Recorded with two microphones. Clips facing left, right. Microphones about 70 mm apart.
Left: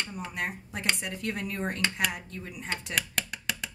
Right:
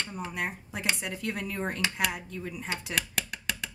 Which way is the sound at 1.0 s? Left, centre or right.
Centre.